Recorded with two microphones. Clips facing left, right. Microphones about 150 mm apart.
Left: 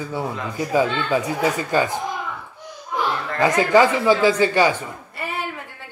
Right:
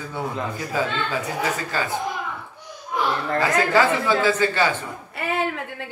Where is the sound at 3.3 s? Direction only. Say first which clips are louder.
Left 4 dB; 15° left (ahead or behind).